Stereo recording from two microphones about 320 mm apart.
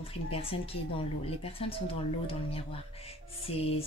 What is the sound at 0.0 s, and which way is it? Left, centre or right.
A woman's voice, centre.